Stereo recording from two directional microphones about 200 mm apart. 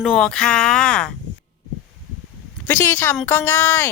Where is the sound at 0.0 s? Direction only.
Centre (ahead or behind).